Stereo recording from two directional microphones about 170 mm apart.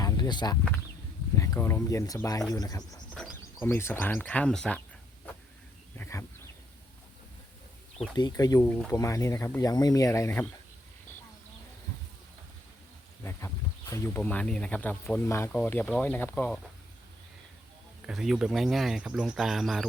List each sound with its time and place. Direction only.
0.0 s a sound: 25° left (ahead or behind)
1.4 s speech: 15° left (ahead or behind)
6.0 s a sound: 15° left (ahead or behind)
8.1 s speech: 25° left (ahead or behind)
13.9 s speech: 15° left (ahead or behind)
18.0 s speech: centre (ahead or behind)